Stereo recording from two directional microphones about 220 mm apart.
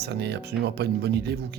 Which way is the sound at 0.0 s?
50° right (ahead or behind).